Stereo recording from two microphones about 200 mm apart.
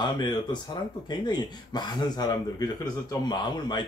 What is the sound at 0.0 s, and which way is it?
Speech, 20° left (ahead or behind).